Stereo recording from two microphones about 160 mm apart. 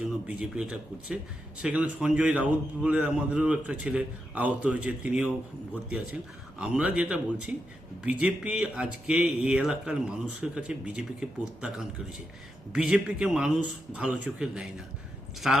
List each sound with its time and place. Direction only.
0.3 s a man's voice: 5° right (ahead or behind)
6.6 s speech: 5° right (ahead or behind)